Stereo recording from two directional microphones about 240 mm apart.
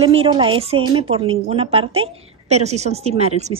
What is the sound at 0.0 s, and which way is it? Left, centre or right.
A woman's voice, right.